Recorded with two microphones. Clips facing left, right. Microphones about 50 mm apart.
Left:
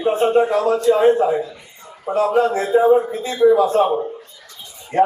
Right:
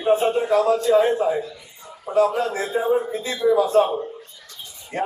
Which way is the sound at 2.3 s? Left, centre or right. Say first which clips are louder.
Left 8 dB; left.